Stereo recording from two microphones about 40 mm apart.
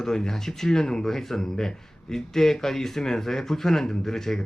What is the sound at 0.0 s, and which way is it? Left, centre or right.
Speech, centre.